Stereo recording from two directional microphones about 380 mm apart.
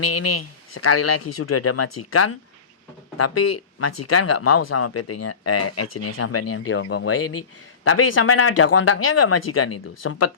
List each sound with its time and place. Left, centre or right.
0.0 s speech: left